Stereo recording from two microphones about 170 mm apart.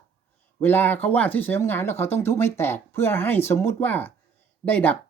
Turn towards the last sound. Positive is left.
turn(degrees=10)  # may be behind; listen again after turning